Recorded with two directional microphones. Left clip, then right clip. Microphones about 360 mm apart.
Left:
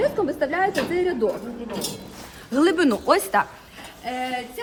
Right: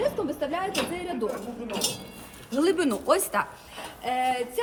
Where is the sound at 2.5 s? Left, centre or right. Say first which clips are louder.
Left 5 dB; left.